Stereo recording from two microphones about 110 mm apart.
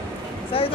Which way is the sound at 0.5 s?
55° left (ahead or behind).